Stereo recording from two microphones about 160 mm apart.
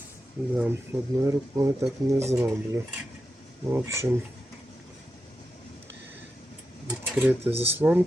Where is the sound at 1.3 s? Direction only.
20° right (ahead or behind).